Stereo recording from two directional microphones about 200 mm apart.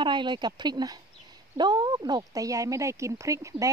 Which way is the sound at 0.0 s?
25° right (ahead or behind).